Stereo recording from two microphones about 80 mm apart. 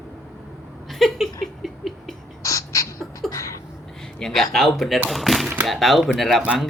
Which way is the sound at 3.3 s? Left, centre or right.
Left.